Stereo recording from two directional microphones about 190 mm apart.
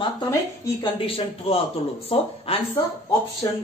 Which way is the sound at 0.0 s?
20° left (ahead or behind).